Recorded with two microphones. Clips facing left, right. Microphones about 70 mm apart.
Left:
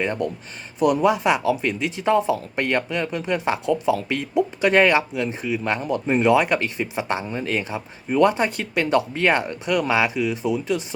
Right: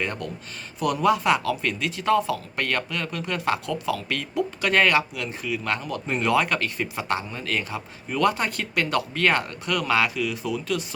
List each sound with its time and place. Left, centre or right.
0.0 s speech: left